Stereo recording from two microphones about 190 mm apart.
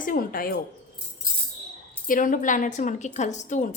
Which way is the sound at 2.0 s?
45° left (ahead or behind).